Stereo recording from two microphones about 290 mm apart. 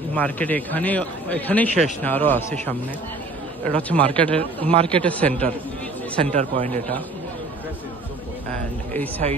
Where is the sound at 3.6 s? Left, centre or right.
Centre.